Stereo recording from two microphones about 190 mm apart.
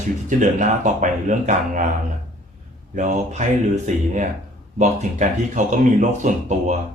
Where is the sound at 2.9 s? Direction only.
40° right (ahead or behind).